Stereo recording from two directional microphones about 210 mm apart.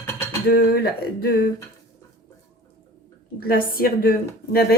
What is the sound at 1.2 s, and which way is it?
Speech, 45° left (ahead or behind).